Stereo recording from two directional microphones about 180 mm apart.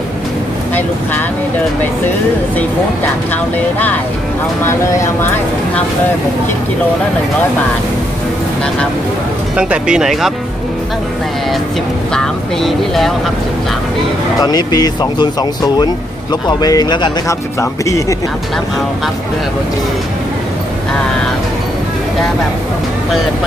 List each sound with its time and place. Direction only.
9.6 s speech: 5° right (ahead or behind)
12.1 s speech: centre (ahead or behind)
14.4 s speech: 20° left (ahead or behind)